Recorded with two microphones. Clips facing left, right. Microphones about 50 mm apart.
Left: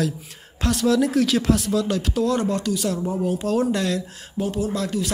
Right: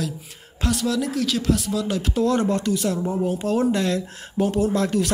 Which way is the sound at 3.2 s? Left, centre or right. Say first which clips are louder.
Even; centre.